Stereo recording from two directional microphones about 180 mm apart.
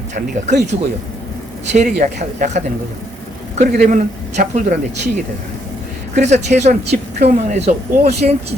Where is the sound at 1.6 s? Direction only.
40° right (ahead or behind).